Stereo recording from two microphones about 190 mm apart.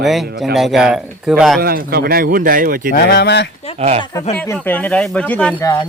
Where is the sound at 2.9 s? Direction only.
60° left (ahead or behind).